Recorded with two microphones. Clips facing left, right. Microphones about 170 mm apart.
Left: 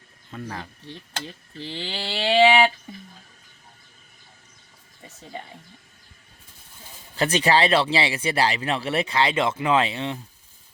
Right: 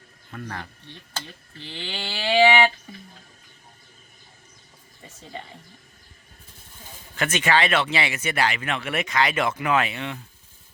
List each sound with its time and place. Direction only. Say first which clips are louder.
0.3 s speech: left 1 dB; 10° left (ahead or behind)
1.5 s speech: left 3 dB; 30° left (ahead or behind)
7.2 s speech: left 2 dB; 35° left (ahead or behind)